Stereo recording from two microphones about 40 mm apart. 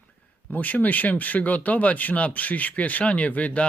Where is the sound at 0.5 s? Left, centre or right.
Left.